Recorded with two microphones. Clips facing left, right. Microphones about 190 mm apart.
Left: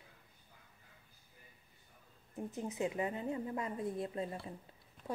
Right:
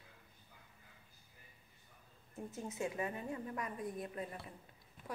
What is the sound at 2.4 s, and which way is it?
A woman's voice, 20° left (ahead or behind).